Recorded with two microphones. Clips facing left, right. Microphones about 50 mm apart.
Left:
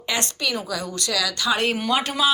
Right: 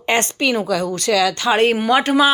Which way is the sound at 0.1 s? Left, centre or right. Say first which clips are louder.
Right 8 dB; right.